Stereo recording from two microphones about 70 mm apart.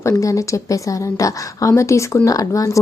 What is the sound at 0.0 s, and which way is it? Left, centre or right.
A woman's voice, left.